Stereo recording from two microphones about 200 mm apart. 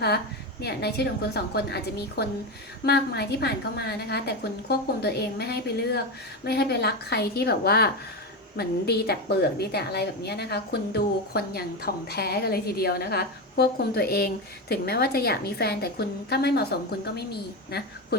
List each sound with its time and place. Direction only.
0.6 s a woman's voice: 55° left (ahead or behind)